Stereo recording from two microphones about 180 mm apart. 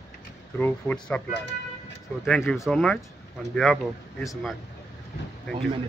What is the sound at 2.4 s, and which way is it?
Speech, 15° left (ahead or behind).